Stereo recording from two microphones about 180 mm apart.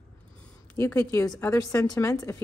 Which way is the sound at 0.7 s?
15° left (ahead or behind).